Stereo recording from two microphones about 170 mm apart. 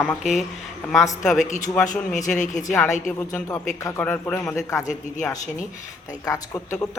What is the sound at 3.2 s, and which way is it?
A man's voice, 15° left (ahead or behind).